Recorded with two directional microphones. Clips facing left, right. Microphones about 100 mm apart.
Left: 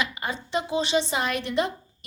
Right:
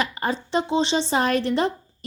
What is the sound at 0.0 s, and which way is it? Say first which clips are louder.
A woman's voice: right 5 dB; 35° right (ahead or behind).